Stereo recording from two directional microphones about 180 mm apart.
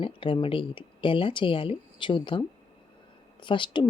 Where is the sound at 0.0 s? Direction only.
30° left (ahead or behind).